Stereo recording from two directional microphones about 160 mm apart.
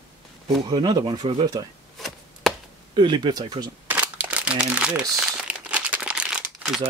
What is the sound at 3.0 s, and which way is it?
Speech, 30° right (ahead or behind).